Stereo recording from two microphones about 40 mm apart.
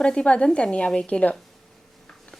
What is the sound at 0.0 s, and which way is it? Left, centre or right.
A woman's voice, left.